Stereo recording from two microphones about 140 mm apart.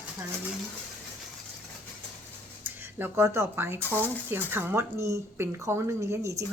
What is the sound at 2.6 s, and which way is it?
Speech, 15° right (ahead or behind).